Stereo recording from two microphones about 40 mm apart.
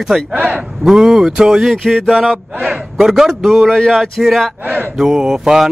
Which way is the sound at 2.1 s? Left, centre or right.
Centre.